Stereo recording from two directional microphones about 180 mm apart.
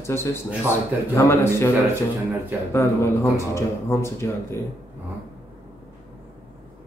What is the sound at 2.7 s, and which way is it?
A man's voice, 15° left (ahead or behind).